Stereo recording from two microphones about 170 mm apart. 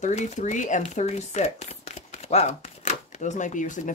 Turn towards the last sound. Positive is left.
turn(degrees=45)  # may be behind; listen again after turning